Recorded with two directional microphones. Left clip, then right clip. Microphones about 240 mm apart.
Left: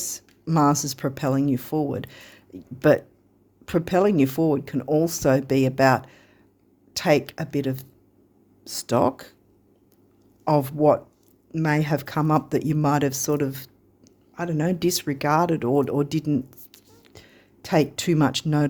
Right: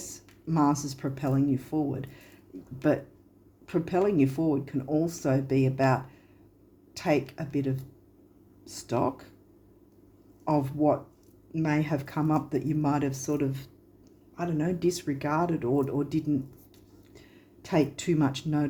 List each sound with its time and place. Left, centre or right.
0.1 s speech: left
10.4 s speech: left